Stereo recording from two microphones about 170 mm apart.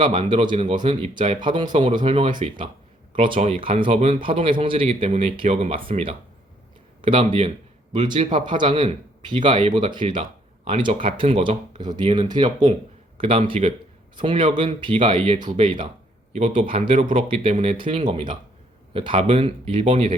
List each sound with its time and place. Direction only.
0.0 s speech: 35° right (ahead or behind)
19.9 s speech: 45° right (ahead or behind)